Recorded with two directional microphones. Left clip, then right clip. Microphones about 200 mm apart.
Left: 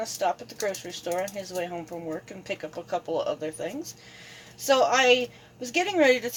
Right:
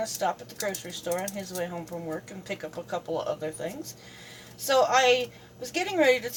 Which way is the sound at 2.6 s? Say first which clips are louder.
Left 2 dB; 35° left (ahead or behind).